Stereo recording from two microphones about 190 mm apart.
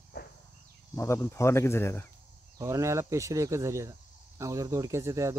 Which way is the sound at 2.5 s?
15° right (ahead or behind).